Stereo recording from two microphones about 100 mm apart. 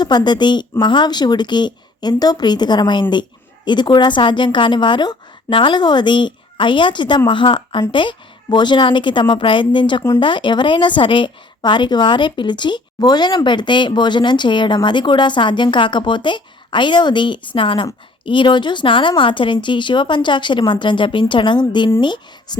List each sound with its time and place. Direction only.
0.0 s a woman's voice: 45° left (ahead or behind)